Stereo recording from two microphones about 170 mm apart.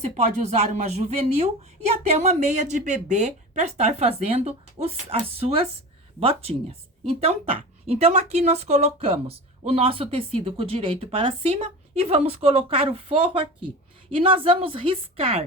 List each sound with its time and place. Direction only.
0.0 s speech: 40° right (ahead or behind)